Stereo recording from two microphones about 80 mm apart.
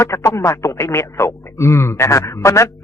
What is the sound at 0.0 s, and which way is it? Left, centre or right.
Speech, left.